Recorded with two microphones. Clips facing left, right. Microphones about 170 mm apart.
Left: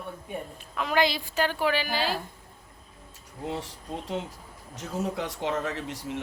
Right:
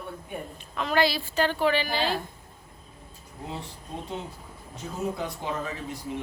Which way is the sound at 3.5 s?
85° left.